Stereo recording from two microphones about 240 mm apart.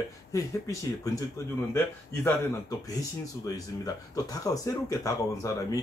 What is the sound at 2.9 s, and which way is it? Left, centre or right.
Speech, centre.